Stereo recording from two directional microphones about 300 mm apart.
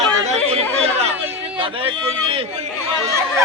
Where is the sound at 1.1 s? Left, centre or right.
Centre.